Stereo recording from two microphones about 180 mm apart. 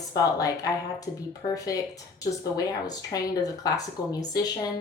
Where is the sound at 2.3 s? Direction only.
20° left (ahead or behind).